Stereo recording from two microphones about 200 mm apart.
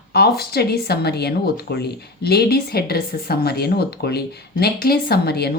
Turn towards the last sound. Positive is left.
turn(degrees=55)  # may be behind; listen again after turning